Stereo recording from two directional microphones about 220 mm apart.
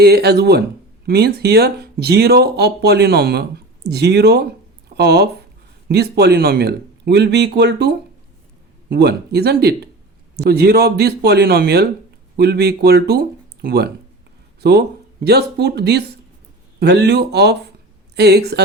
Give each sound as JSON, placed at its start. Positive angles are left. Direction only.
{"t": 0.0, "sound": "speech", "side_deg": -45}